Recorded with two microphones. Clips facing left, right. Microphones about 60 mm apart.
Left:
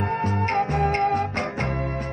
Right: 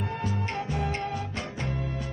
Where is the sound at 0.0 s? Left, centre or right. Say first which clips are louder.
Left 7 dB; left.